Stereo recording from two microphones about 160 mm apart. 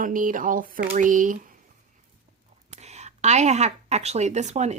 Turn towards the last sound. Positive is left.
turn(degrees=-45)  # may be behind; listen again after turning